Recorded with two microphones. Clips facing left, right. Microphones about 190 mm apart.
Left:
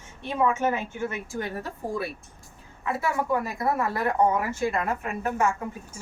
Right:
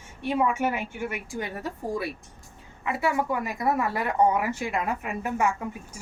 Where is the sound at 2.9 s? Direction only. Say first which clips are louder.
Even; 15° right (ahead or behind).